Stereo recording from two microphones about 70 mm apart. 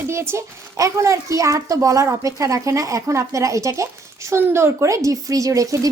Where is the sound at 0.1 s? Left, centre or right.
Right.